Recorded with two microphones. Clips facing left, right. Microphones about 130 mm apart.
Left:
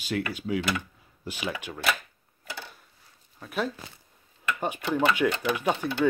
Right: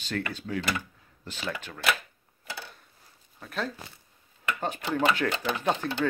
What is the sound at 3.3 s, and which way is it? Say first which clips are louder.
Speech: left 3 dB; 10° left (ahead or behind).